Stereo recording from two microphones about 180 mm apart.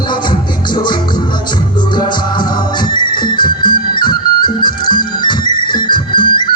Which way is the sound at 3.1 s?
25° left (ahead or behind).